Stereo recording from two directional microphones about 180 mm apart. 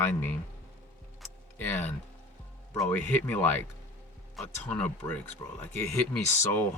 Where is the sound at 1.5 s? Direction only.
10° left (ahead or behind).